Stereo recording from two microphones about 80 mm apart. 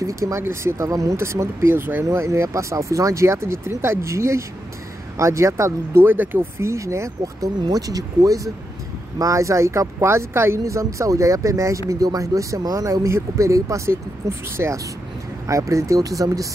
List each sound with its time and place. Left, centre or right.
0.0 s speech: right
0.8 s speech: right
2.0 s speech: right
15.4 s speech: right